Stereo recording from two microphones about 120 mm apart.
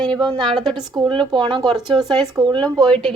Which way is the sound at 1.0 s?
45° right (ahead or behind).